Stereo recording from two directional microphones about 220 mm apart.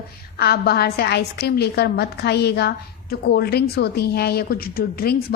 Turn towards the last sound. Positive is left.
turn(degrees=45)  # may be behind; listen again after turning